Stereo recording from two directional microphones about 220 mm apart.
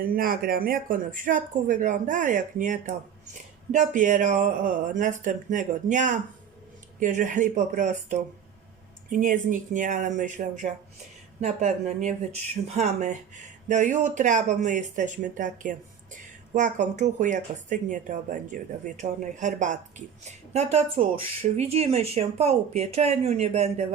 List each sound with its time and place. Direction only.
0.0 s speech: 40° right (ahead or behind)